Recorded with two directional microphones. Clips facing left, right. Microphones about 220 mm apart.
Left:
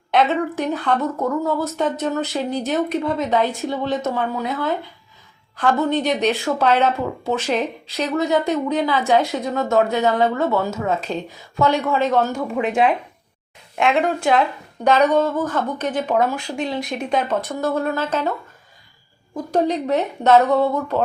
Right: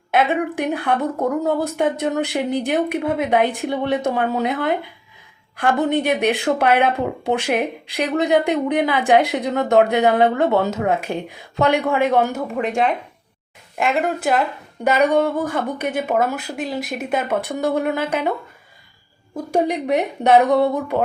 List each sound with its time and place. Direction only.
0.1 s speech: 10° right (ahead or behind)
12.5 s a woman's voice: centre (ahead or behind)
19.5 s speech: 10° right (ahead or behind)